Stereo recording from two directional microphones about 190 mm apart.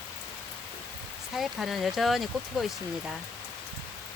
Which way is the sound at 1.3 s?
Centre (ahead or behind).